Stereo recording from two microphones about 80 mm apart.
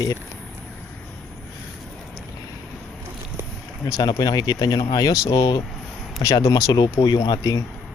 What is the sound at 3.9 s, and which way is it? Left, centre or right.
Speech, left.